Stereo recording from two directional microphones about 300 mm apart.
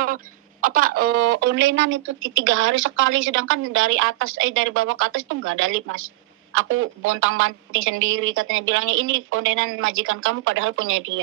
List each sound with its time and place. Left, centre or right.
0.0 s speech: right